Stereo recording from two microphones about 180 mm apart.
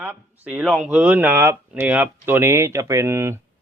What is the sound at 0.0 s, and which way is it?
Speech, 10° right (ahead or behind).